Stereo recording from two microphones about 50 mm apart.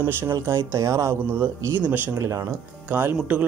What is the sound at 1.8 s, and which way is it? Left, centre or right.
Speech, right.